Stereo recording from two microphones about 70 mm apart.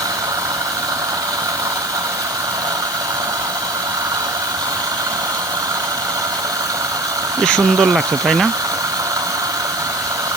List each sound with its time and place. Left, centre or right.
7.4 s speech: centre